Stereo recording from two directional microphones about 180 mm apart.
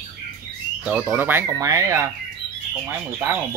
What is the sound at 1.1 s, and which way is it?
Speech, 10° right (ahead or behind).